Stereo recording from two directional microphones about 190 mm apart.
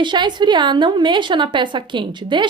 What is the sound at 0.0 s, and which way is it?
A woman's voice, 25° right (ahead or behind).